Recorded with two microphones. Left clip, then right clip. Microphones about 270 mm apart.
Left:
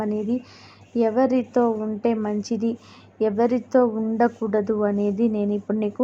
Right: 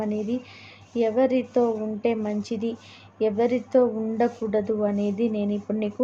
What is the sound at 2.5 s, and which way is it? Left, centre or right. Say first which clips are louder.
Speech: left 4 dB; centre.